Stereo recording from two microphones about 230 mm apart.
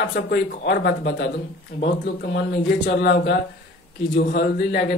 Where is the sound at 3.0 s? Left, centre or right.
Left.